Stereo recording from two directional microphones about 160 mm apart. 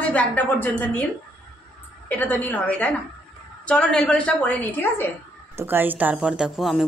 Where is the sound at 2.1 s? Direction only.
10° left (ahead or behind).